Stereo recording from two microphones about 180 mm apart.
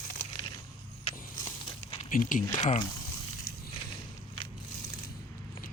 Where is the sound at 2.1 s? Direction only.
50° left (ahead or behind).